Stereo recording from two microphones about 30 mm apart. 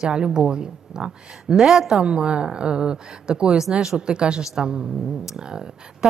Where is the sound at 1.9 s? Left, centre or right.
Right.